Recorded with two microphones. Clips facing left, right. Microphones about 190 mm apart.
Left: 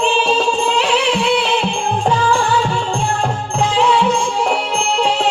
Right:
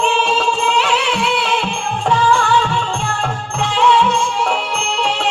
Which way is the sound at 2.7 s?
35° left (ahead or behind).